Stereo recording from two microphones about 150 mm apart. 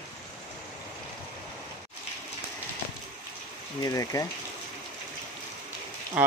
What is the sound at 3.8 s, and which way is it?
Speech, 20° left (ahead or behind).